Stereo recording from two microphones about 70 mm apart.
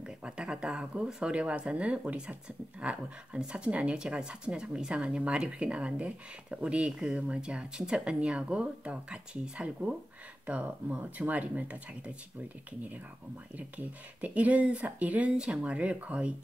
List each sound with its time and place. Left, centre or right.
0.0 s speech: centre
13.6 s speech: right